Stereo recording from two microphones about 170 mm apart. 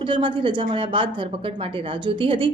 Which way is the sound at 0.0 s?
30° right (ahead or behind).